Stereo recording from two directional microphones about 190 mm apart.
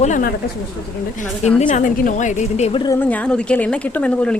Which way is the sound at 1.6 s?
45° left (ahead or behind).